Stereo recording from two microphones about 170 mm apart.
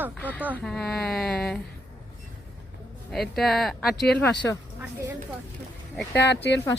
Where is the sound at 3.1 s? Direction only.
Centre (ahead or behind).